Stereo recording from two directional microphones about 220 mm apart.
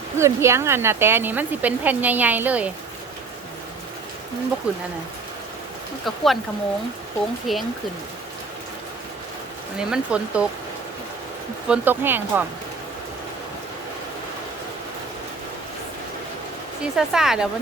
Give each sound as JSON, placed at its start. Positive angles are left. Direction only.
{"t": 0.2, "sound": "a woman's voice", "side_deg": -10}
{"t": 4.7, "sound": "speech", "side_deg": -5}
{"t": 6.1, "sound": "speech", "side_deg": 0}
{"t": 7.5, "sound": "speech", "side_deg": 0}
{"t": 9.7, "sound": "speech", "side_deg": -5}
{"t": 11.7, "sound": "a woman's voice", "side_deg": -10}
{"t": 16.8, "sound": "speech", "side_deg": 0}